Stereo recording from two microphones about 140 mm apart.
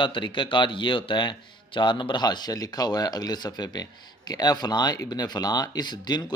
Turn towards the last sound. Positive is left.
turn(degrees=30)  # may be behind; listen again after turning